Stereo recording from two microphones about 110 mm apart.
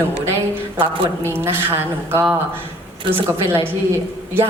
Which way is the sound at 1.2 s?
20° right (ahead or behind).